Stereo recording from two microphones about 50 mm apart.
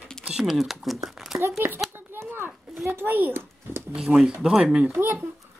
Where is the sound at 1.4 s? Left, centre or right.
Right.